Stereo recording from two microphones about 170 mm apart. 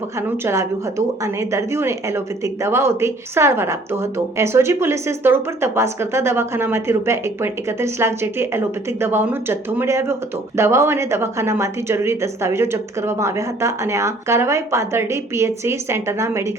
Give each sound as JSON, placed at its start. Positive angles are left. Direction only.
{"t": 0.2, "sound": "speech", "side_deg": -15}